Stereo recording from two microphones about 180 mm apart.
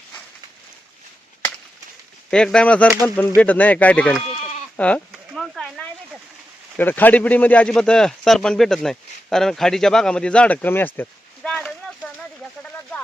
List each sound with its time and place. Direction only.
2.3 s speech: 5° left (ahead or behind)
4.3 s goat: 35° left (ahead or behind)
4.8 s a sound: 5° left (ahead or behind)
6.7 s speech: 10° left (ahead or behind)